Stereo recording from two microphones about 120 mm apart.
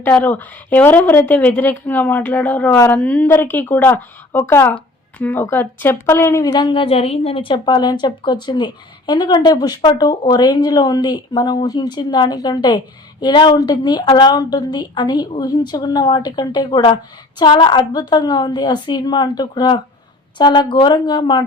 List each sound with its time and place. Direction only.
0.0 s a woman's voice: 15° left (ahead or behind); by 21.4 s 40° left (ahead or behind)